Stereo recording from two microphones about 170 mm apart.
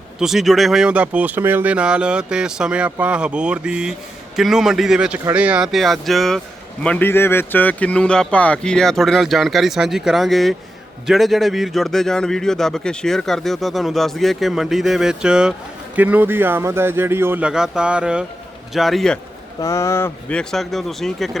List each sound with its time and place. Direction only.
0.2 s a man's voice: centre (ahead or behind)
19.6 s speech: 15° left (ahead or behind)
20.4 s a man's voice: centre (ahead or behind)